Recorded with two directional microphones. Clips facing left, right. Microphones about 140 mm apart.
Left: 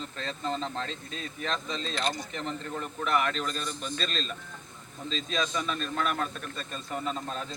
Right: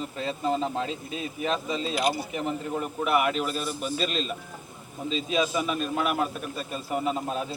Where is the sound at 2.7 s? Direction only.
20° right (ahead or behind).